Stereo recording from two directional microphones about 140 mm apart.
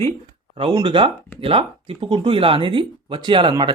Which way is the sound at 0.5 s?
40° right (ahead or behind).